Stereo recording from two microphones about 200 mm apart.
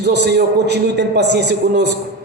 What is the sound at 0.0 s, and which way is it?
A man's voice, 55° right (ahead or behind).